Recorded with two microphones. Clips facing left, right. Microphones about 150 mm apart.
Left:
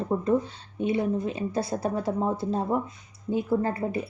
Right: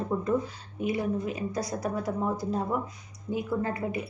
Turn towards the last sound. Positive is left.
turn(degrees=35)  # may be behind; listen again after turning